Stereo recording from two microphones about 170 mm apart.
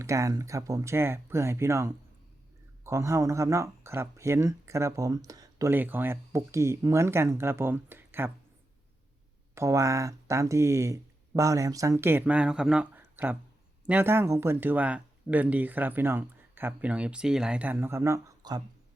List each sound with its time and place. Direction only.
0.0 s speech: 20° right (ahead or behind)
9.6 s speech: 20° right (ahead or behind)